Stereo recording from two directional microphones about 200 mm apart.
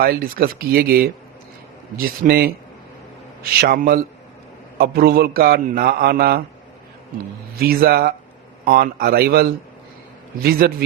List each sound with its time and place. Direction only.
0.0 s a man's voice: 45° right (ahead or behind)
3.6 s a man's voice: 50° right (ahead or behind)
7.5 s a man's voice: 50° right (ahead or behind)